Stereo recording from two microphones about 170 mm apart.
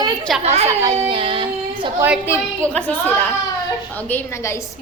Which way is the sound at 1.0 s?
30° right (ahead or behind).